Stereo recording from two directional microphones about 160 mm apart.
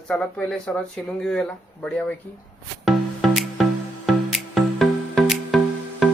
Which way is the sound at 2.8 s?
Centre (ahead or behind).